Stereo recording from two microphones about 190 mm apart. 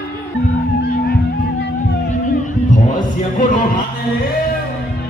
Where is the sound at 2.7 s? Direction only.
40° left (ahead or behind).